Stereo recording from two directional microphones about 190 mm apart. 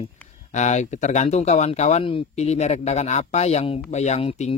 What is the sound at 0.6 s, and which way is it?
Speech, 35° left (ahead or behind).